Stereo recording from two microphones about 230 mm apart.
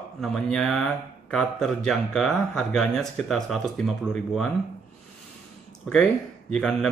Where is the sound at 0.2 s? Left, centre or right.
Centre.